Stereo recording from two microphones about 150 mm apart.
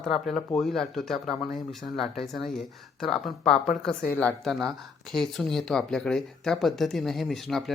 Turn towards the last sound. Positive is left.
turn(degrees=0)  # may be behind; listen again after turning